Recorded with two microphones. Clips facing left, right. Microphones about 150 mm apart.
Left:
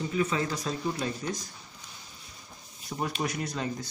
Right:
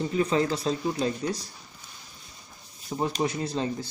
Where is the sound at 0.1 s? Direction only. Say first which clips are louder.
Right 4 dB; 35° right (ahead or behind).